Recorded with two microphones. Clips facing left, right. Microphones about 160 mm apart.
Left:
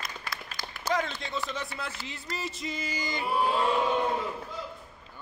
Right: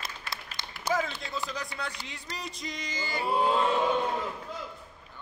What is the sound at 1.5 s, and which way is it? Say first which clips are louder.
Speech: even; centre (ahead or behind).